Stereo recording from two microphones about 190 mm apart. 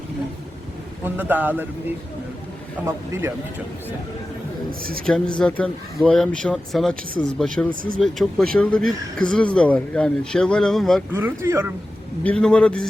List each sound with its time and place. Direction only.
1.0 s a man's voice: 10° right (ahead or behind)
2.8 s a man's voice: 15° right (ahead or behind)
4.8 s a woman's voice: 50° right (ahead or behind)
5.0 s speech: 5° left (ahead or behind)
11.1 s a man's voice: 10° right (ahead or behind)
12.2 s speech: 5° left (ahead or behind)